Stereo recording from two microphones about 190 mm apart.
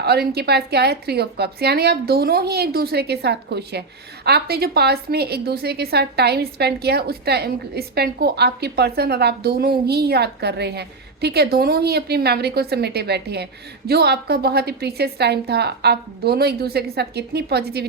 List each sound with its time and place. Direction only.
0.0 s a woman's voice: 55° right (ahead or behind)